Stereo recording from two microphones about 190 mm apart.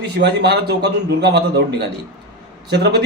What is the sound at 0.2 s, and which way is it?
Speech, 60° right (ahead or behind).